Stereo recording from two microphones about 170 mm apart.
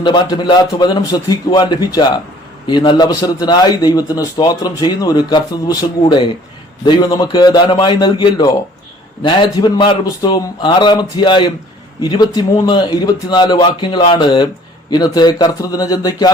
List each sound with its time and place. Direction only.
0.0 s a man's voice: 25° left (ahead or behind)